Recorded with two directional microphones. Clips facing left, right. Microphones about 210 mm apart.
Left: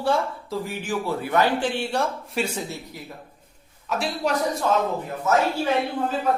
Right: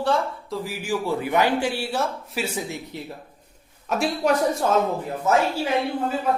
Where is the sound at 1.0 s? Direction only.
15° right (ahead or behind).